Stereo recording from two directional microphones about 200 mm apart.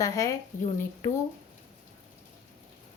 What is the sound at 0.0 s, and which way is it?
Speech, 15° left (ahead or behind).